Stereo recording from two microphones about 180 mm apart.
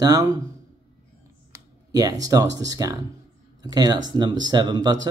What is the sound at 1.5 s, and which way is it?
Speech, 20° right (ahead or behind).